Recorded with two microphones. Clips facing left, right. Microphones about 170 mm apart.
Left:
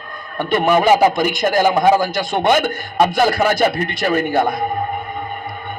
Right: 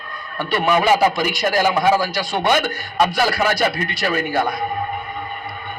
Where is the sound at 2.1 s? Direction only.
50° left (ahead or behind).